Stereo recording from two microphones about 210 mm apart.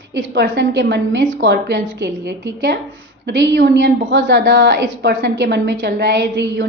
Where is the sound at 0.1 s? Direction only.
60° right (ahead or behind).